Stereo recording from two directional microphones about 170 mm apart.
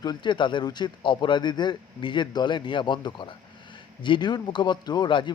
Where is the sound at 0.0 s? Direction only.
25° left (ahead or behind).